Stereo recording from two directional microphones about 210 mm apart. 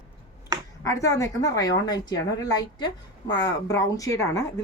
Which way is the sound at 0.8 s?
15° left (ahead or behind).